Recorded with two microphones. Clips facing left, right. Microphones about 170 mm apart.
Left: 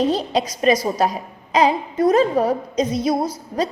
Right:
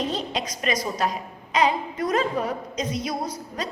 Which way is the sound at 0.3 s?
30° left (ahead or behind).